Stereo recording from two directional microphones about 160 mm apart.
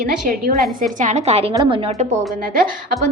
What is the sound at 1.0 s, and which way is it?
Speech, 45° right (ahead or behind).